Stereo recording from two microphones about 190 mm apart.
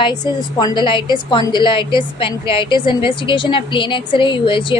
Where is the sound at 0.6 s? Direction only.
25° left (ahead or behind).